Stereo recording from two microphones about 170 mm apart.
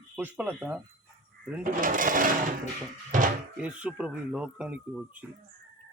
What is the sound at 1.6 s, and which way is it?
Speech, 55° right (ahead or behind).